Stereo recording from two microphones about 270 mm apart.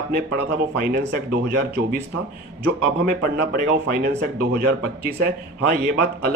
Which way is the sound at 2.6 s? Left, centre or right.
Right.